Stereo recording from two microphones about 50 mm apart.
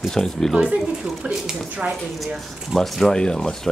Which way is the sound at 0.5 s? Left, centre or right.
Centre.